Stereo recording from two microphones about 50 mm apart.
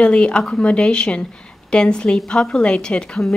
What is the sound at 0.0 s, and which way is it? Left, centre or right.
A woman's voice, left.